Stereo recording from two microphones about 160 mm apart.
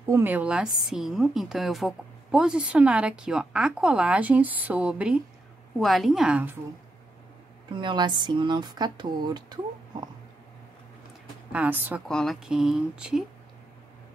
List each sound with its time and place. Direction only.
0.0 s a woman's voice: 15° right (ahead or behind)
7.7 s speech: 30° right (ahead or behind)
11.5 s a woman's voice: 10° right (ahead or behind)
12.1 s speech: 5° left (ahead or behind)